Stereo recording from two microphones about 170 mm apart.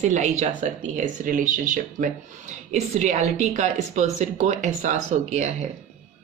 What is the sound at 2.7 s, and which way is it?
Speech, 40° right (ahead or behind).